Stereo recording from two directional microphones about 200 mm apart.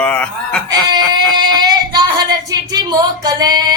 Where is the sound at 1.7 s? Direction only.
20° right (ahead or behind).